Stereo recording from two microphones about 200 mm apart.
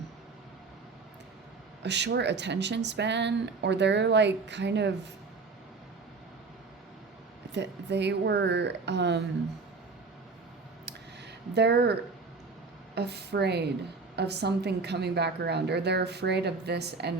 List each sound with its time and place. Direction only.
1.8 s speech: 60° right (ahead or behind)
7.5 s speech: 60° right (ahead or behind)
11.5 s speech: 55° right (ahead or behind)